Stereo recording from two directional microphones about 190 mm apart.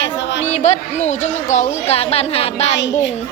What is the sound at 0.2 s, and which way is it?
Chatter, 65° left (ahead or behind).